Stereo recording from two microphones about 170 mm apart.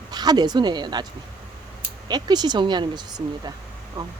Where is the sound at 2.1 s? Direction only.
25° right (ahead or behind).